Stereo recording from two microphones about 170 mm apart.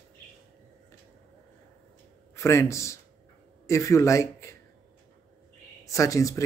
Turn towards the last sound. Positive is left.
turn(degrees=20)  # may be behind; listen again after turning